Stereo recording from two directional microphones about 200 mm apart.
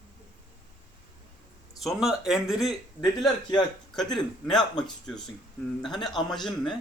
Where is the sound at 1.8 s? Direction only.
Centre (ahead or behind).